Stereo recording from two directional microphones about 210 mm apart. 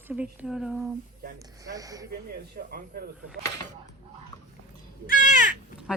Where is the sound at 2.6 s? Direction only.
45° right (ahead or behind).